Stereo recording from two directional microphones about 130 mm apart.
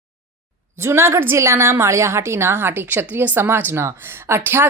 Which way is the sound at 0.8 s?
20° right (ahead or behind).